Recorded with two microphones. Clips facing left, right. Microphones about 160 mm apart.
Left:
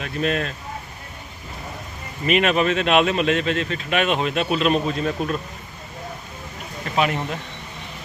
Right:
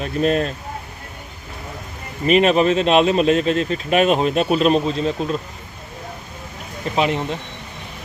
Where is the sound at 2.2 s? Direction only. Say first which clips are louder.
Right 4 dB; 35° right (ahead or behind).